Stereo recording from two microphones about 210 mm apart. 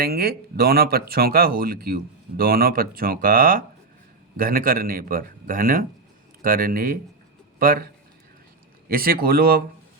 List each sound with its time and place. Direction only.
0.0 s speech: 45° right (ahead or behind)
8.9 s speech: 45° right (ahead or behind)